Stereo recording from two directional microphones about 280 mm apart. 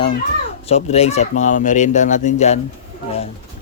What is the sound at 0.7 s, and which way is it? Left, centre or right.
Speech, left.